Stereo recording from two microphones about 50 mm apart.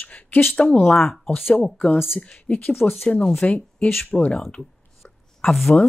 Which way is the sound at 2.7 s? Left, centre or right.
Left.